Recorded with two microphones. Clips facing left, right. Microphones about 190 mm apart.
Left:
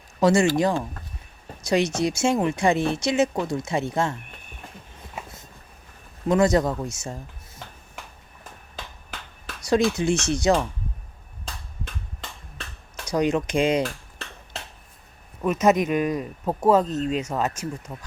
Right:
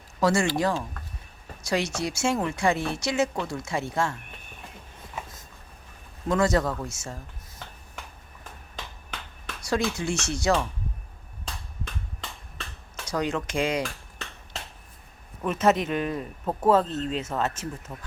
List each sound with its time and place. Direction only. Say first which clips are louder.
0.2 s speech: left 4 dB; 20° left (ahead or behind)
6.2 s speech: left 4 dB; 15° left (ahead or behind)
9.6 s speech: left 6 dB; 20° left (ahead or behind)
13.1 s speech: left 6 dB; 15° left (ahead or behind)
15.6 s speech: left 3 dB; 15° left (ahead or behind)